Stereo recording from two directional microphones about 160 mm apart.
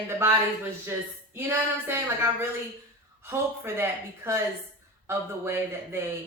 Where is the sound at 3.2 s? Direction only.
15° right (ahead or behind).